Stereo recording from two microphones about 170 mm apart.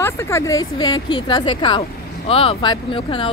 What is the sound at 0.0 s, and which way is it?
Speech, 15° left (ahead or behind).